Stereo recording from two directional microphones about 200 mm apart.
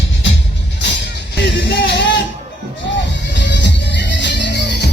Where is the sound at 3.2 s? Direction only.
60° left (ahead or behind).